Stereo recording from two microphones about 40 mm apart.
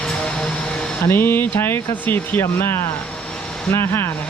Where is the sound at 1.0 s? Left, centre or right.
Left.